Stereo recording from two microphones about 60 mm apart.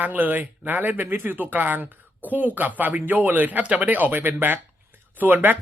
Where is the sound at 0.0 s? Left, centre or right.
Right.